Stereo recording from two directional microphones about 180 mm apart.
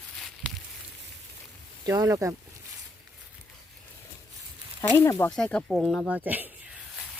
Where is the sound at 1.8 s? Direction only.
15° right (ahead or behind).